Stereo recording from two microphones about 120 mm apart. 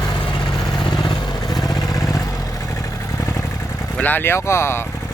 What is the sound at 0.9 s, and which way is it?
Vehicle, 35° left (ahead or behind).